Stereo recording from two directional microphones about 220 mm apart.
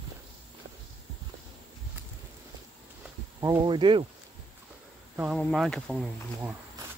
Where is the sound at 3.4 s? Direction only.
15° right (ahead or behind).